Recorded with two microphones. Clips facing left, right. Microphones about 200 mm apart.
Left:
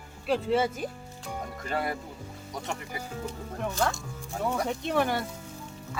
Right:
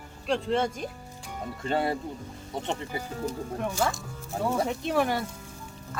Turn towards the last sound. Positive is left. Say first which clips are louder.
# right 1 dB
turn(degrees=0)  # may be behind; listen again after turning